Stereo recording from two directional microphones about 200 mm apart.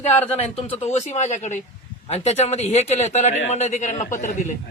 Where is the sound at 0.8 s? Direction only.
35° left (ahead or behind).